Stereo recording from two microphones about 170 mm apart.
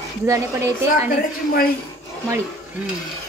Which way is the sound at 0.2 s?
15° right (ahead or behind).